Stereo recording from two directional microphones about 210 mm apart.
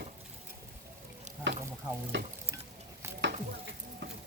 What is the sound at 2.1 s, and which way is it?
Frying, 60° right (ahead or behind).